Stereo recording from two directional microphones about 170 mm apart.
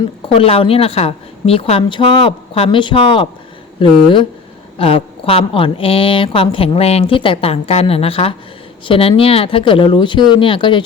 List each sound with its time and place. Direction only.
0.0 s a woman's voice: 30° left (ahead or behind)